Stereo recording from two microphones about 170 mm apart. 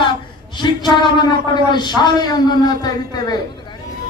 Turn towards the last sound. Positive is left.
turn(degrees=25)  # may be behind; listen again after turning